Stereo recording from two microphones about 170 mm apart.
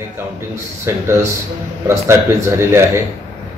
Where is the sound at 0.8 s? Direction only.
15° right (ahead or behind).